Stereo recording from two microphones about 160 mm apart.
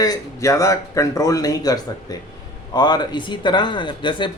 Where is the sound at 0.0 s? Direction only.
20° left (ahead or behind).